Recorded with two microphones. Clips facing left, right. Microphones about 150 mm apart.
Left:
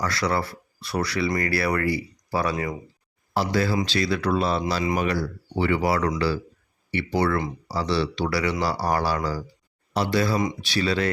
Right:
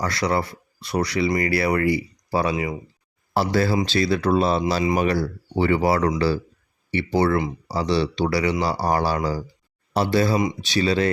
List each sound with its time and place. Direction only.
0.0 s speech: 25° right (ahead or behind)
4.9 s speech: 35° right (ahead or behind)